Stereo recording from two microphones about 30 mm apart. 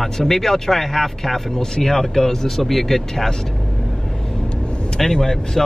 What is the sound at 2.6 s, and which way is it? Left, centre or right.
Speech, centre.